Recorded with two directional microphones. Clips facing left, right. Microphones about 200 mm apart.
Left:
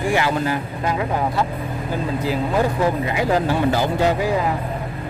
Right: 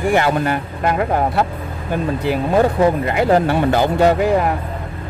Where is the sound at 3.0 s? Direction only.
55° right (ahead or behind).